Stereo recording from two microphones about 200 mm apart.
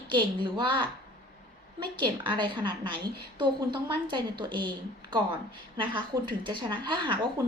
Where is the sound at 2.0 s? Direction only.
25° right (ahead or behind).